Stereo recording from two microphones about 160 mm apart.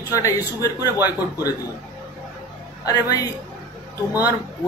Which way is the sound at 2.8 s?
20° left (ahead or behind).